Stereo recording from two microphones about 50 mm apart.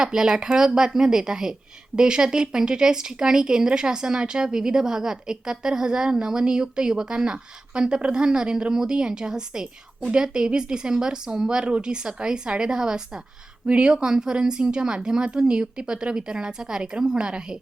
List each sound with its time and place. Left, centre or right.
0.0 s a woman's voice: centre